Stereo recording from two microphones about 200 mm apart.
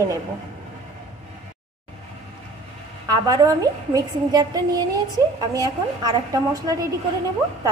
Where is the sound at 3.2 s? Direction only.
20° right (ahead or behind).